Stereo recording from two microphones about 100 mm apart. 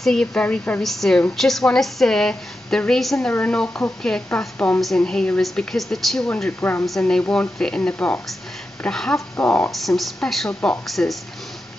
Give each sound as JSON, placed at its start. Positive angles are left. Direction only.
{"t": 0.0, "sound": "a woman's voice", "side_deg": 5}
{"t": 3.3, "sound": "a woman's voice", "side_deg": 15}
{"t": 6.6, "sound": "a woman's voice", "side_deg": 20}
{"t": 6.9, "sound": "a woman's voice", "side_deg": 5}
{"t": 9.4, "sound": "a woman's voice", "side_deg": 20}
{"t": 9.7, "sound": "a woman's voice", "side_deg": 0}